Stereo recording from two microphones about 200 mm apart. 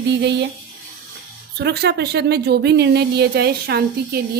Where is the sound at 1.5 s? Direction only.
55° right (ahead or behind).